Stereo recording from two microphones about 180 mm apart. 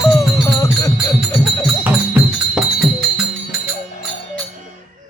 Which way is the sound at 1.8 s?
5° right (ahead or behind).